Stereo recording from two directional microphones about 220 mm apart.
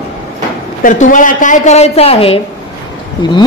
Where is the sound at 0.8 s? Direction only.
35° left (ahead or behind).